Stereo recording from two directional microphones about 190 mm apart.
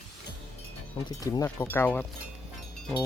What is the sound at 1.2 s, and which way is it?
Speech, 20° left (ahead or behind).